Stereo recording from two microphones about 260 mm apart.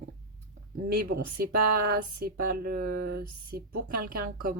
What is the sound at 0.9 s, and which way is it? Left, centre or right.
Speech, right.